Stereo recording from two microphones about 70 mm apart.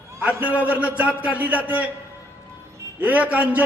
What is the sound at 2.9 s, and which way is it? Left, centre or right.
Speech, right.